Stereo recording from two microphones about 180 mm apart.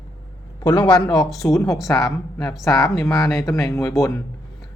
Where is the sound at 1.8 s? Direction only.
20° left (ahead or behind).